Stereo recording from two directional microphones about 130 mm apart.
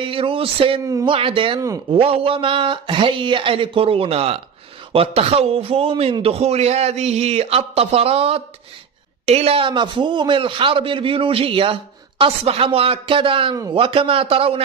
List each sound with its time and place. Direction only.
0.0 s a man's voice: 45° right (ahead or behind)